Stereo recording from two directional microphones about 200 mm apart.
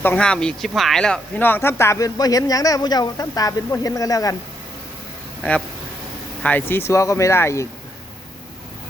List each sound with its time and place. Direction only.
0.0 s speech: 5° left (ahead or behind)
5.4 s speech: 5° left (ahead or behind)